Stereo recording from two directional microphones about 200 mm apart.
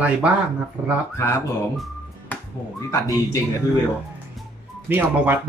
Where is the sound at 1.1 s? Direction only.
15° left (ahead or behind).